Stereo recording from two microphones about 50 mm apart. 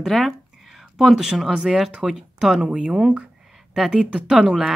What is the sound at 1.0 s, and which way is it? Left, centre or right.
Speech, centre.